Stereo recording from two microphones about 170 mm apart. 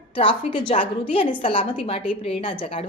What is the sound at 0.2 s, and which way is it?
A woman's voice, 30° left (ahead or behind).